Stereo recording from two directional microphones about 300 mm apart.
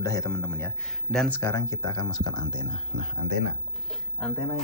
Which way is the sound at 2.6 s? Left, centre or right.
Right.